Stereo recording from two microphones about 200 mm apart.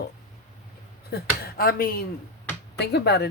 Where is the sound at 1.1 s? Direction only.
50° left (ahead or behind).